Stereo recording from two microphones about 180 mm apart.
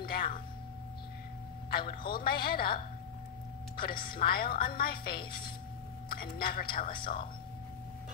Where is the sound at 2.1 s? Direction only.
55° left (ahead or behind).